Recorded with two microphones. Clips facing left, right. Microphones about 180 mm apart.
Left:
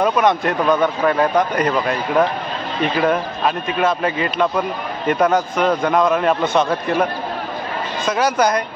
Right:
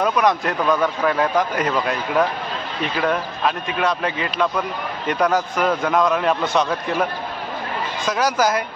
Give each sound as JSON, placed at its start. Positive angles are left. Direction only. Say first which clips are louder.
{"t": 0.0, "sound": "a man's voice", "louder": "left 2 dB", "side_deg": 0}